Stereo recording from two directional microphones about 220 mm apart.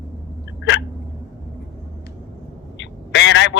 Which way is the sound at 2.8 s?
55° left (ahead or behind).